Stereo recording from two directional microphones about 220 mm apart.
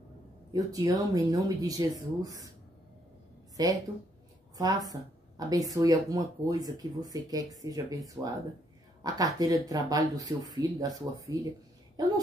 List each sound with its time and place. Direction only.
0.5 s speech: 15° right (ahead or behind)
3.6 s speech: 15° right (ahead or behind)